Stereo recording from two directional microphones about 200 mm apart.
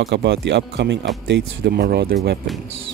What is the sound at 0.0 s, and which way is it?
Speech, 60° right (ahead or behind).